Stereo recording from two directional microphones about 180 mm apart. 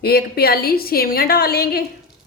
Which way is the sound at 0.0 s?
60° left (ahead or behind).